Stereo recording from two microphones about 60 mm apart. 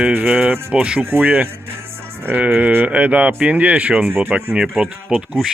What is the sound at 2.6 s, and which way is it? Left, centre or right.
Speech, right.